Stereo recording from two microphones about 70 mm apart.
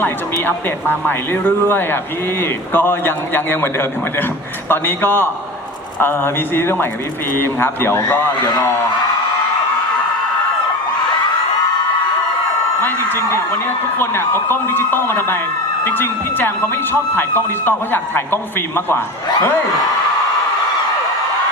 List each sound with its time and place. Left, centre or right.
0.4 s speech: left
13.1 s speech: left